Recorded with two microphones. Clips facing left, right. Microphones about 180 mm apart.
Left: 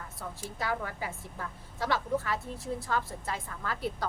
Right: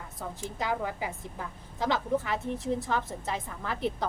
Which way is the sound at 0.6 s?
15° right (ahead or behind).